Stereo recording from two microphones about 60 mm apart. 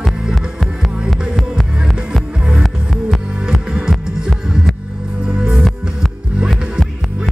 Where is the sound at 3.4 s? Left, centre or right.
Centre.